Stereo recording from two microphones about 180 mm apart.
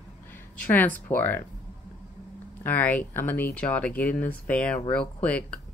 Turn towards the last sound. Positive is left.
turn(degrees=5)  # may be behind; listen again after turning